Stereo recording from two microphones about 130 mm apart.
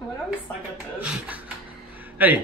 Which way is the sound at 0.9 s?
10° right (ahead or behind).